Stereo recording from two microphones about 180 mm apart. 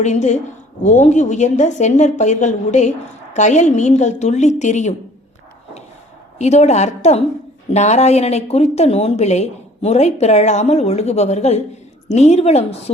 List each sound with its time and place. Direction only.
0.0 s a woman's voice: 40° left (ahead or behind)
6.4 s a woman's voice: 40° left (ahead or behind)